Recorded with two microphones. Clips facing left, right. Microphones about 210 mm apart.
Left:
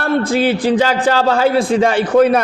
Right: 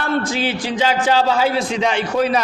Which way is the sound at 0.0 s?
55° left (ahead or behind).